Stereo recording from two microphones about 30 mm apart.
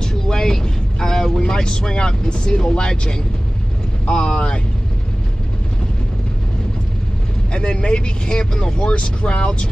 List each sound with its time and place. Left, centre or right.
0.0 s vehicle: centre
1.4 s speech: left
7.5 s speech: left
8.8 s speech: left